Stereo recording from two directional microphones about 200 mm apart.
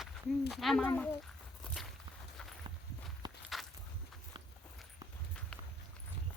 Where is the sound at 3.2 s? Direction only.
20° right (ahead or behind).